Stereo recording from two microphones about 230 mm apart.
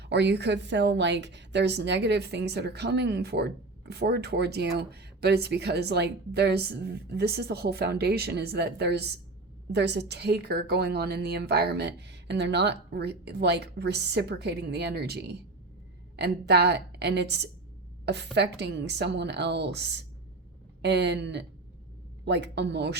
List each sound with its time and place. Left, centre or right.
0.0 s a woman's voice: right
20.8 s a woman's voice: right